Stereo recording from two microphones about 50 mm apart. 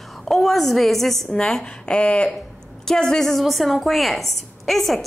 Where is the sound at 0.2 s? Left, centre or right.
Centre; by 2.3 s left.